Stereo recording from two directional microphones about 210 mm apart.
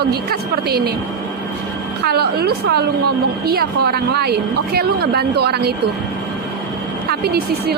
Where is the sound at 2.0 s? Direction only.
50° right (ahead or behind).